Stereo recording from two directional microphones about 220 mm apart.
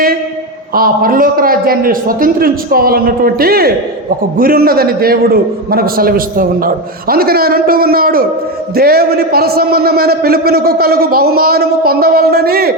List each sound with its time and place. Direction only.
0.7 s a man's voice: 40° right (ahead or behind)